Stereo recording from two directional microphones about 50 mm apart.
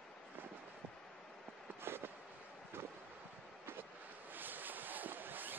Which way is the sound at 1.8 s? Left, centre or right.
Right.